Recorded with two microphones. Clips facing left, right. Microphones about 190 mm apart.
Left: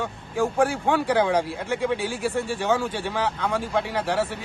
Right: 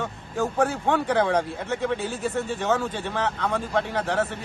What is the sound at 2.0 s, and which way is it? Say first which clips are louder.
Speech: left 1 dB; 75° left (ahead or behind).